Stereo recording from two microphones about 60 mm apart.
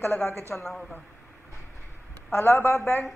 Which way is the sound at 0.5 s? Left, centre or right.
Centre.